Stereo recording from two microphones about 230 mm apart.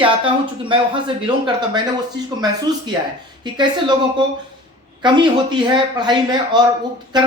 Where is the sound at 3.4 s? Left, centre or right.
Centre.